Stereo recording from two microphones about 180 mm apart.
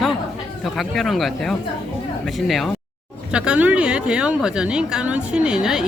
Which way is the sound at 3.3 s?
5° right (ahead or behind).